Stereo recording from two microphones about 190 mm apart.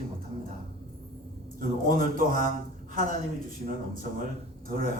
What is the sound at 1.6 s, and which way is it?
A man's voice, 50° right (ahead or behind).